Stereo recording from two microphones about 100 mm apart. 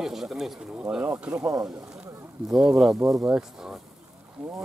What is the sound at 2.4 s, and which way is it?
Speech, 5° right (ahead or behind).